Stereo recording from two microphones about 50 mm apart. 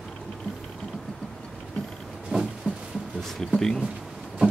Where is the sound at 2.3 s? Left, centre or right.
Centre.